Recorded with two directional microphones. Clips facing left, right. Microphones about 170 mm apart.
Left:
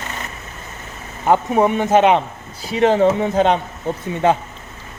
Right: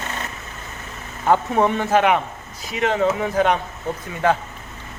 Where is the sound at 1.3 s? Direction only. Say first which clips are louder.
Left 2 dB; 15° left (ahead or behind).